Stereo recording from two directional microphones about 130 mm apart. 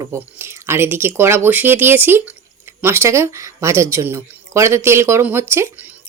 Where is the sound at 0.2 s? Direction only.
20° right (ahead or behind).